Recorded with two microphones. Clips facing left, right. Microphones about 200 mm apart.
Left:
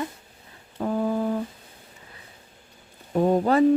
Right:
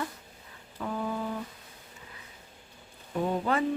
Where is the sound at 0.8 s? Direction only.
40° left (ahead or behind).